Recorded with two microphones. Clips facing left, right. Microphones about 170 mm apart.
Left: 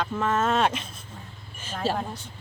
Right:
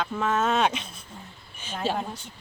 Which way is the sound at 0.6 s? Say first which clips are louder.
Even; 5° left (ahead or behind).